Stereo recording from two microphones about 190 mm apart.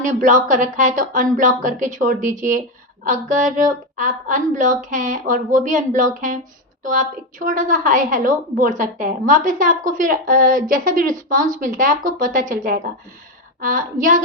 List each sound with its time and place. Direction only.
0.0 s a woman's voice: 45° right (ahead or behind)